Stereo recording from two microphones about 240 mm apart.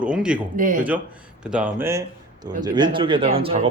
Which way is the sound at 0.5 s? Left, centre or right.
Right.